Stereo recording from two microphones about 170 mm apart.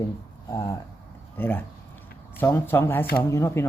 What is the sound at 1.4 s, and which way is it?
Speech, 10° left (ahead or behind).